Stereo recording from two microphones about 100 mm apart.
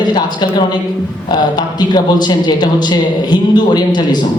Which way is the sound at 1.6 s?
45° left (ahead or behind).